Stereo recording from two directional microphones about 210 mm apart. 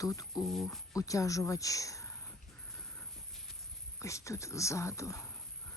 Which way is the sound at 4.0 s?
15° left (ahead or behind).